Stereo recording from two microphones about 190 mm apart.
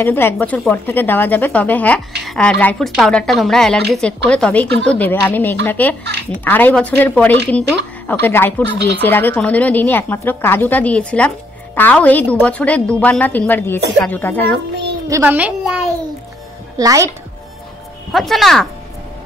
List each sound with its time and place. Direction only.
0.0 s a woman's voice: 10° left (ahead or behind)
15.0 s a child's voice: 10° right (ahead or behind)
16.7 s a woman's voice: 15° right (ahead or behind)
18.1 s a woman's voice: centre (ahead or behind)